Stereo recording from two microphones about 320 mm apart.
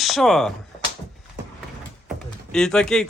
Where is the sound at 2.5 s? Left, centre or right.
Centre.